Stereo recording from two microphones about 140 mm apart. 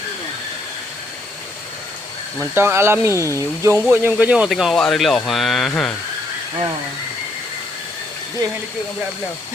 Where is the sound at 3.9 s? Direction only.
15° right (ahead or behind); by 5.9 s 5° left (ahead or behind).